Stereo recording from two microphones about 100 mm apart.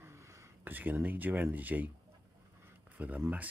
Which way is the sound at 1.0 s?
20° right (ahead or behind).